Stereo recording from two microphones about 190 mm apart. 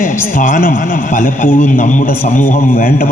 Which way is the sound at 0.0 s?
45° left (ahead or behind).